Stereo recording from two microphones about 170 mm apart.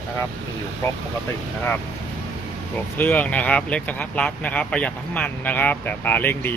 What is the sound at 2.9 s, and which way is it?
Speech, 10° left (ahead or behind).